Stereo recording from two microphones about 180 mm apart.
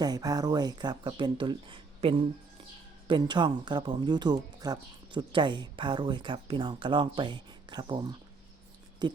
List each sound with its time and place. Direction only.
0.0 s speech: 20° right (ahead or behind)